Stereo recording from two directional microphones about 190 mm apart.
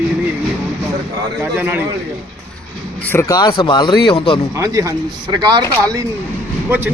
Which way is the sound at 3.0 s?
10° left (ahead or behind).